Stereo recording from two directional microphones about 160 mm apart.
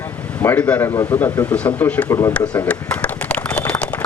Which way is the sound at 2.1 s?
20° left (ahead or behind).